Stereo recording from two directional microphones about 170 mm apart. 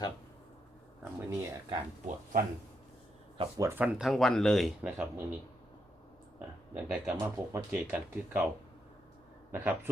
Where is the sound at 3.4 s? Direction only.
20° right (ahead or behind); by 4.7 s centre (ahead or behind).